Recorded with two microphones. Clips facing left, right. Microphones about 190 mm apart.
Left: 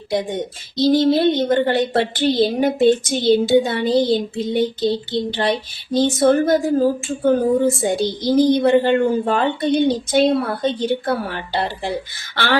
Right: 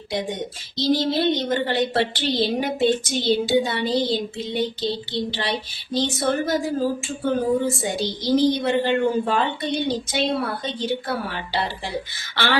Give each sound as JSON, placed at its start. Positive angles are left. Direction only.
{"t": 0.1, "sound": "speech", "side_deg": 50}